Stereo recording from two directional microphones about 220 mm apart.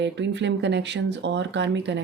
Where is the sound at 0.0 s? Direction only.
55° right (ahead or behind).